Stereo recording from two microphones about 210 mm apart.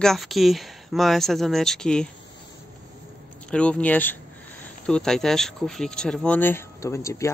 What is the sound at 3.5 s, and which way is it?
Speech, 5° left (ahead or behind).